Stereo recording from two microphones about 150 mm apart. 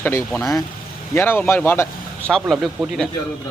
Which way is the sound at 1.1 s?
15° left (ahead or behind).